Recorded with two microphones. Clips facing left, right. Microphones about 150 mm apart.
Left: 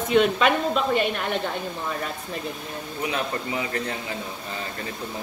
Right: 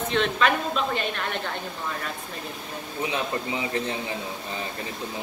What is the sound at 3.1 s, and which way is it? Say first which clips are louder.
Speech: left 1 dB; 25° right (ahead or behind).